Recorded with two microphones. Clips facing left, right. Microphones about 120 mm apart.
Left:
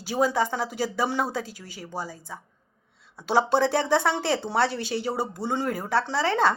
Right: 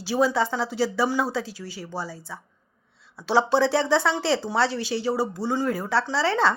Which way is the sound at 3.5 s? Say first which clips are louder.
Right 1 dB; 50° left (ahead or behind).